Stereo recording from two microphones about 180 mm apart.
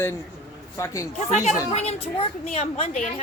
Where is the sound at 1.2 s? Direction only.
40° left (ahead or behind).